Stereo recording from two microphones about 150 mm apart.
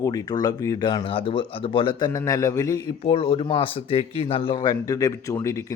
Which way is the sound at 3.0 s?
40° left (ahead or behind).